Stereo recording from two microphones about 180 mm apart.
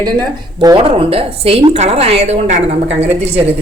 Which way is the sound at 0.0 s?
20° right (ahead or behind).